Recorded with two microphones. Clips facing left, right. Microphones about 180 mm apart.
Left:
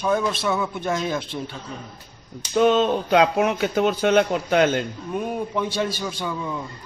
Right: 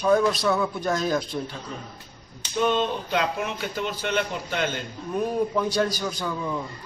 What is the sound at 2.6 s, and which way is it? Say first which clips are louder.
Speech: left 6 dB; 90° left.